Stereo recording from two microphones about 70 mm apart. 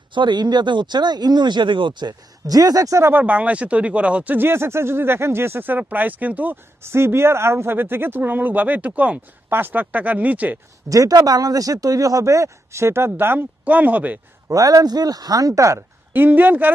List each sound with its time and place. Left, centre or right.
0.2 s speech: right
3.0 s speech: right
4.4 s speech: right
6.8 s speech: right
10.9 s speech: right
14.5 s speech: right
16.1 s speech: right